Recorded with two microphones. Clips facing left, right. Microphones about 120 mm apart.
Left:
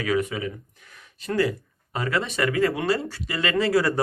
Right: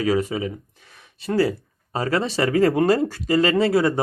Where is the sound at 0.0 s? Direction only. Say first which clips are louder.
Right 3 dB; 30° right (ahead or behind).